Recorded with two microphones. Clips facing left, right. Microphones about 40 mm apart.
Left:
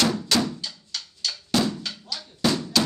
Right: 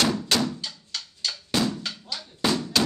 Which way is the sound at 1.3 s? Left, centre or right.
Centre.